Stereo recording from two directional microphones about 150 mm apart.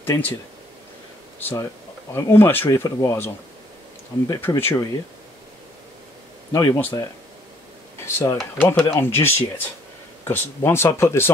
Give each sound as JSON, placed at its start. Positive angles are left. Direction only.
{"t": 0.0, "sound": "speech", "side_deg": 15}
{"t": 1.4, "sound": "speech", "side_deg": 15}
{"t": 4.3, "sound": "speech", "side_deg": 15}
{"t": 6.5, "sound": "speech", "side_deg": 20}